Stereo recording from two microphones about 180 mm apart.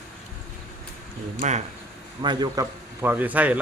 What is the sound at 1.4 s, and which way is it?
Speech, 40° right (ahead or behind).